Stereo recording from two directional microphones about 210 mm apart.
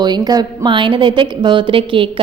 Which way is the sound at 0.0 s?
20° right (ahead or behind).